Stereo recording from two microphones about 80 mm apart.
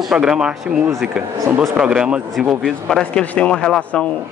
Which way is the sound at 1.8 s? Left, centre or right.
Centre.